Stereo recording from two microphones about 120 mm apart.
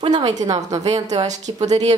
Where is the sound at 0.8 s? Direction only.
60° right (ahead or behind).